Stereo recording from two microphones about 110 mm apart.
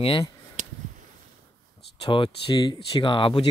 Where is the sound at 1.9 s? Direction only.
50° left (ahead or behind).